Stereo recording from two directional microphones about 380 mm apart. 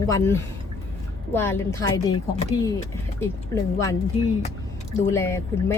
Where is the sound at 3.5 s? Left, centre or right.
Centre.